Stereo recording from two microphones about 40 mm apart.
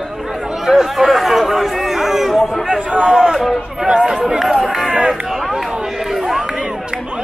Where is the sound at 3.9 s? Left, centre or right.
Right.